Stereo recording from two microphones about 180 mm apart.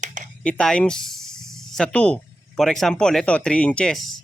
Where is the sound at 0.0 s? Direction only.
45° right (ahead or behind).